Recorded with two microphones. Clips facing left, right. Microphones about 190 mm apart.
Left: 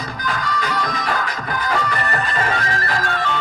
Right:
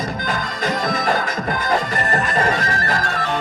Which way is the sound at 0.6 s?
45° right (ahead or behind).